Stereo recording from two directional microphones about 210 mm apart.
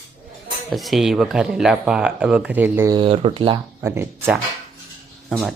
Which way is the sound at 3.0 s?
25° right (ahead or behind).